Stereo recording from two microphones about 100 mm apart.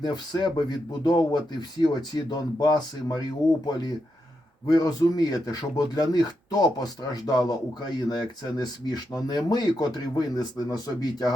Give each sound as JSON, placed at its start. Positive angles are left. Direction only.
{"t": 0.0, "sound": "speech", "side_deg": 45}
{"t": 4.6, "sound": "speech", "side_deg": 40}